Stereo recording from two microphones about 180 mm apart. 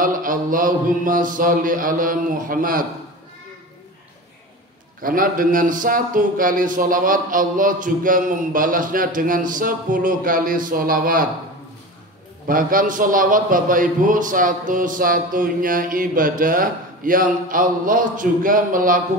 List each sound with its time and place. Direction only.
0.0 s a man's voice: 50° right (ahead or behind)
5.0 s a man's voice: 50° right (ahead or behind)
12.4 s a man's voice: 50° right (ahead or behind)